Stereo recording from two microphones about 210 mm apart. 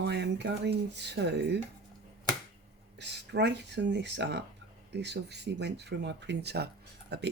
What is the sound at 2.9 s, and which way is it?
Speech, 55° right (ahead or behind).